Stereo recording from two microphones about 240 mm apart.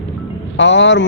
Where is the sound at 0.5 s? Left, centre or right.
Left.